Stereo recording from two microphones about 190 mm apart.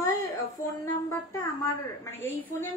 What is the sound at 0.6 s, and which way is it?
Child singing, 15° left (ahead or behind).